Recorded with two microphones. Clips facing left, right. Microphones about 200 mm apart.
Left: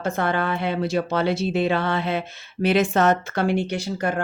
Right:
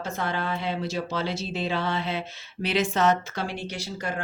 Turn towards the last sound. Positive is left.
turn(degrees=55)  # may be behind; listen again after turning